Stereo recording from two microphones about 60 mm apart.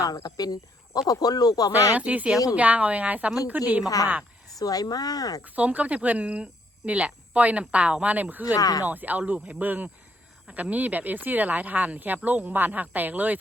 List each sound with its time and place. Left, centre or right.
0.0 s speech: left
1.9 s speech: right
3.8 s speech: left
5.4 s speech: right
8.5 s speech: left
8.8 s speech: right